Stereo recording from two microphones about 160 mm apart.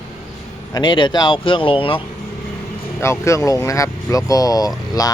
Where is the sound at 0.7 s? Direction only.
30° left (ahead or behind).